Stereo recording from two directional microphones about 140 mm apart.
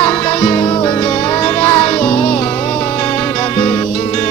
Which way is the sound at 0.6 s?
35° left (ahead or behind).